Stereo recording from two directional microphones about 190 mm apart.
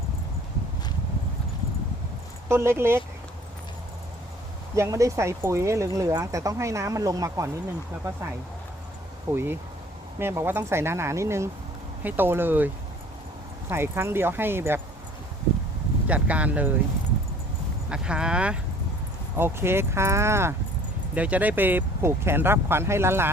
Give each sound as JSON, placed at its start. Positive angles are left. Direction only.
{"t": 2.5, "sound": "speech", "side_deg": -15}
{"t": 4.7, "sound": "speech", "side_deg": -15}
{"t": 9.3, "sound": "speech", "side_deg": -10}
{"t": 16.0, "sound": "speech", "side_deg": -5}
{"t": 17.8, "sound": "speech", "side_deg": -5}